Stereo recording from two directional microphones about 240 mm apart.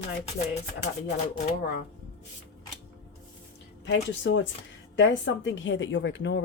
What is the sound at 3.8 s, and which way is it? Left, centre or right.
Speech, left.